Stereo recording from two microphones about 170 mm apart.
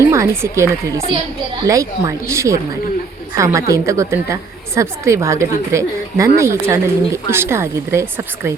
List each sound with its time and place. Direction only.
0.0 s speech: 15° right (ahead or behind)